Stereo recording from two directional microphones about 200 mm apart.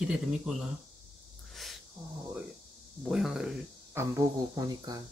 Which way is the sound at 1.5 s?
Centre (ahead or behind).